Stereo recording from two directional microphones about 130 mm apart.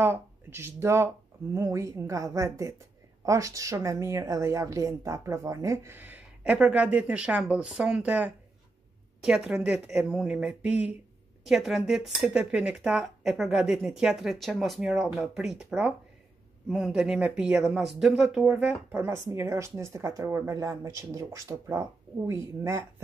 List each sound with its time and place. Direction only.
0.0 s a woman's voice: 20° right (ahead or behind)
11.4 s speech: centre (ahead or behind)
18.9 s a woman's voice: 20° right (ahead or behind)